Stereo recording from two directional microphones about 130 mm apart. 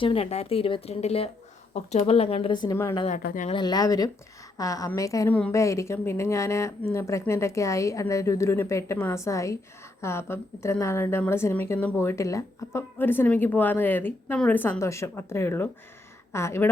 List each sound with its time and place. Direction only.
0.0 s speech: 45° left (ahead or behind)
3.1 s speech: 70° left (ahead or behind)
3.5 s a woman's voice: 35° left (ahead or behind)